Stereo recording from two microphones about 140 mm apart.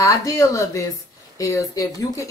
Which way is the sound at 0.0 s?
25° left (ahead or behind).